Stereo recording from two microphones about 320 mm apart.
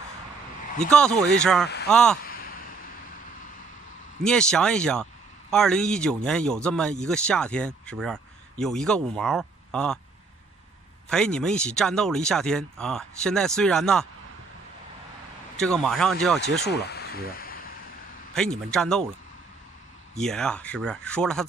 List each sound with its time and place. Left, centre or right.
0.8 s speech: centre
2.2 s a sound: left
4.2 s speech: centre
11.1 s speech: centre
15.6 s speech: centre
16.6 s a sound: left
18.3 s speech: centre
20.2 s speech: centre